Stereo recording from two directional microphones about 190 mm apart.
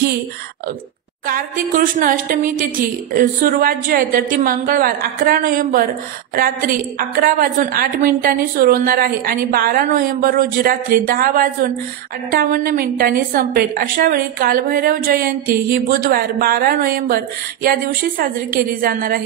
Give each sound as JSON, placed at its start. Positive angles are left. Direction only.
{"t": 1.2, "sound": "a woman's voice", "side_deg": -50}
{"t": 7.2, "sound": "a woman's voice", "side_deg": -50}
{"t": 18.5, "sound": "a woman's voice", "side_deg": -45}